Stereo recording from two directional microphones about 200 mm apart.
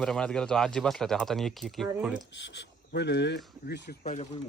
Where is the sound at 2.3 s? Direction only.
60° left (ahead or behind).